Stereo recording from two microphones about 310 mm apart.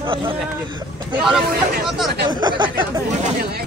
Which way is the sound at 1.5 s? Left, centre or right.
Right.